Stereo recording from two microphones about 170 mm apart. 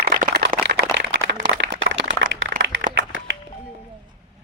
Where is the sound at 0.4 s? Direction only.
75° right (ahead or behind); by 2.5 s 90° right.